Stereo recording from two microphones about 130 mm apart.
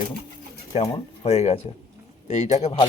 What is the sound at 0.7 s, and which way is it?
Speech, 55° left (ahead or behind).